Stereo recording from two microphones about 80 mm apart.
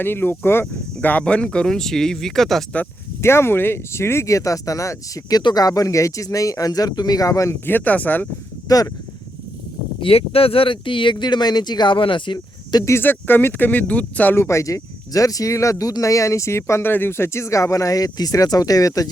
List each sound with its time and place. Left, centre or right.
0.0 s speech: left
0.6 s speech: centre
3.2 s speech: left
5.4 s speech: left
7.6 s speech: left
8.6 s speech: left
10.1 s speech: left
12.8 s speech: left
14.3 s speech: left